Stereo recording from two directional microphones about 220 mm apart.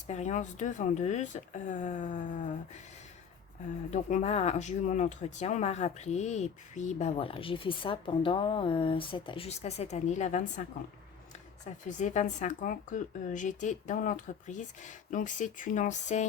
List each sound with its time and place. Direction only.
0.1 s speech: 30° left (ahead or behind)
3.9 s speech: 30° left (ahead or behind)
11.6 s speech: 35° left (ahead or behind)